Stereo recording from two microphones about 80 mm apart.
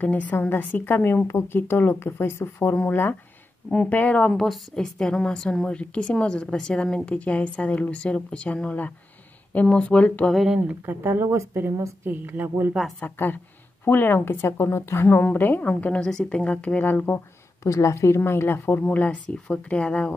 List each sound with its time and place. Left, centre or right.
0.0 s a woman's voice: centre
4.3 s a woman's voice: centre
10.3 s speech: centre
10.7 s a woman's voice: right
13.0 s a woman's voice: left
17.6 s speech: left
18.8 s a woman's voice: centre